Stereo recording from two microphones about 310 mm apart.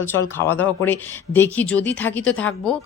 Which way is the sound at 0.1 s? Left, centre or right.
Centre.